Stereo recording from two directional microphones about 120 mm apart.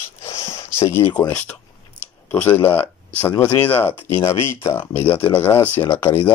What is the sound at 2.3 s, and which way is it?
Speech, 15° left (ahead or behind).